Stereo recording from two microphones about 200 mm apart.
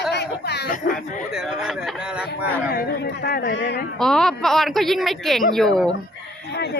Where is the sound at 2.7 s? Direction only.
55° left (ahead or behind).